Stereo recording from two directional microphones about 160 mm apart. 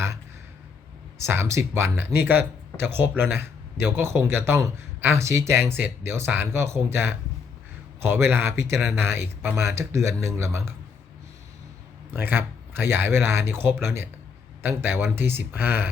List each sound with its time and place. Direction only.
1.2 s speech: 15° right (ahead or behind)
8.1 s speech: 15° right (ahead or behind)
12.1 s speech: 15° right (ahead or behind)